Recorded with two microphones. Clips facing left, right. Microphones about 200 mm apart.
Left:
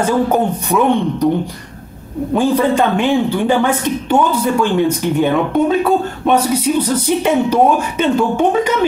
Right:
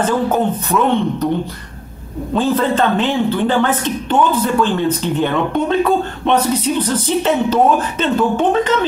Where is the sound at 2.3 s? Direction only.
15° left (ahead or behind).